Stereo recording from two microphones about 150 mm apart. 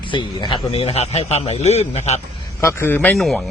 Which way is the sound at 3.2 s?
Centre (ahead or behind).